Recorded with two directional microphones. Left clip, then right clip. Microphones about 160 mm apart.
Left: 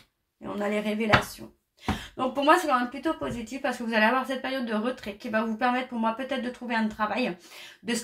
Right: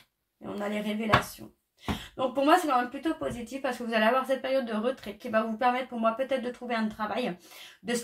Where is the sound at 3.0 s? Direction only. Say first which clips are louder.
Left 2 dB; 35° right (ahead or behind).